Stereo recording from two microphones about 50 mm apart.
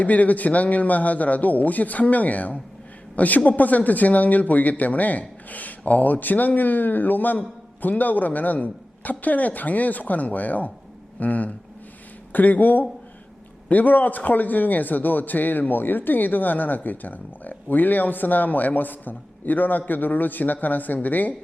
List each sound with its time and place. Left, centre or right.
0.0 s speech: left